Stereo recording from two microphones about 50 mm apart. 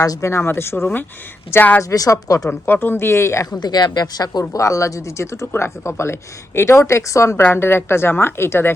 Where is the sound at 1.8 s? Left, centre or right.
Left.